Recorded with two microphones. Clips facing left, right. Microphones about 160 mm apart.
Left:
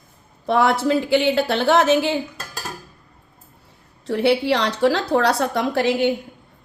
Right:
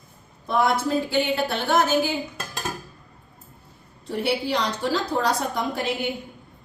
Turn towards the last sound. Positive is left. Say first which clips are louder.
# left 7 dB
turn(degrees=75)  # may be behind; listen again after turning